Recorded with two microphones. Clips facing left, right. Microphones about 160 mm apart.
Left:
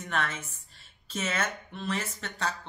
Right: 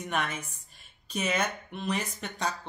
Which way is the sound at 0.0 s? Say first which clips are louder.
Right 1 dB; 15° right (ahead or behind).